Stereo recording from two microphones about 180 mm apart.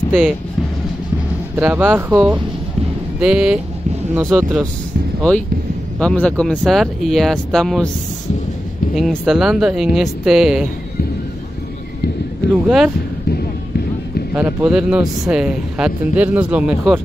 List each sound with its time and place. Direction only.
1.6 s speech: 10° right (ahead or behind)
5.9 s speech: 5° left (ahead or behind)
8.9 s speech: centre (ahead or behind)
12.6 s speech: 5° right (ahead or behind)
13.3 s basketball bounce: 60° left (ahead or behind)
14.3 s speech: 10° right (ahead or behind)